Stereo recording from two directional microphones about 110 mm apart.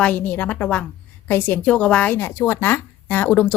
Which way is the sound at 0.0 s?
15° left (ahead or behind).